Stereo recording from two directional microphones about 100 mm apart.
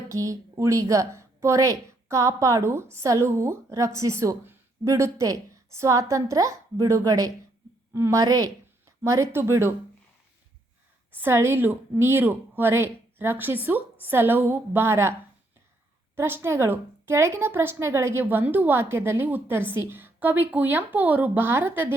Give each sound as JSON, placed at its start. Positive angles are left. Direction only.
{"t": 0.1, "sound": "a woman's voice", "side_deg": -35}
{"t": 11.1, "sound": "a woman's voice", "side_deg": -25}
{"t": 16.1, "sound": "a woman's voice", "side_deg": -25}